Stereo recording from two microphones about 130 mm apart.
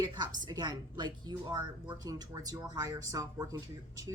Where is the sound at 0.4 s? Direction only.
35° right (ahead or behind).